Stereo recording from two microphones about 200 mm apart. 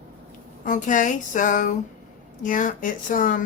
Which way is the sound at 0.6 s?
40° left (ahead or behind).